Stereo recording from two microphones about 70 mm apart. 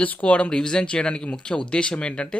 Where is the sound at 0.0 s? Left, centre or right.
Left.